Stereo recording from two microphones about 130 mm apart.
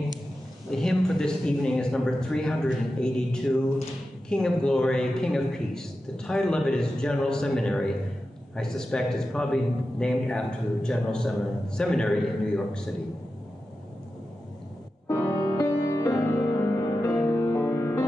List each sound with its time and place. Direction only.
0.7 s a man's voice: 5° left (ahead or behind)
15.0 s music: 20° left (ahead or behind)